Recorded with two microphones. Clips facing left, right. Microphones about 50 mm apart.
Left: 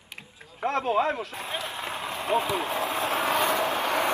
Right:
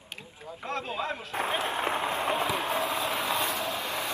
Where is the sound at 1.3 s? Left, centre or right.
Right.